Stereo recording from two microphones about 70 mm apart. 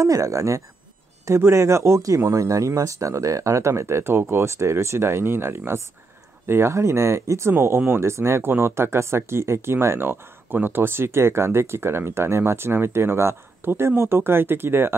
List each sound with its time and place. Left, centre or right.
0.0 s speech: right